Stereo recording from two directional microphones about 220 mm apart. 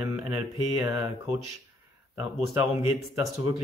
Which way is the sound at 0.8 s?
10° right (ahead or behind).